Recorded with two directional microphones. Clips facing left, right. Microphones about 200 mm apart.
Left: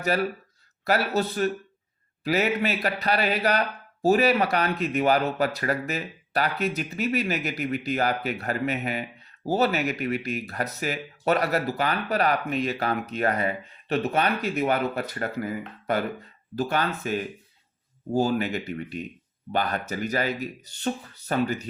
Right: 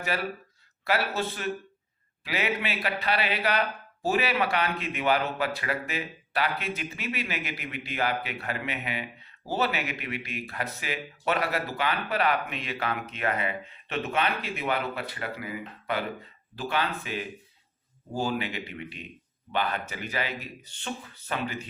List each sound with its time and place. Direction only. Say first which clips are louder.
0.9 s speech: left 4 dB; 40° left (ahead or behind)